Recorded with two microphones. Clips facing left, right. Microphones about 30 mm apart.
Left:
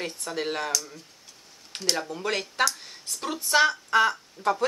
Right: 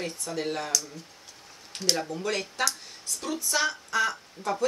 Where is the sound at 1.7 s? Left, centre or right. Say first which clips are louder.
Even; left.